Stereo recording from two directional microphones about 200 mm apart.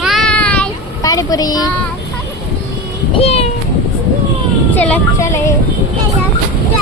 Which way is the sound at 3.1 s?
30° left (ahead or behind).